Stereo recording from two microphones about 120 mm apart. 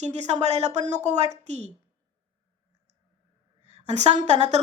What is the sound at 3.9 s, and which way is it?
Speech, 70° right (ahead or behind).